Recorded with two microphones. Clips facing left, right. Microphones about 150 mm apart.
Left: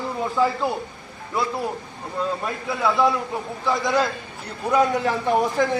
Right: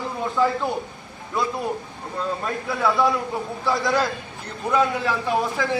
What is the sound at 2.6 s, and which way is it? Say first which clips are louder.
A man's voice: left 1 dB; centre (ahead or behind).